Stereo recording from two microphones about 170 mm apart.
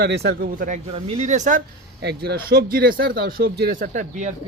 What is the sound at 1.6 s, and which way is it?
Speech, 70° right (ahead or behind).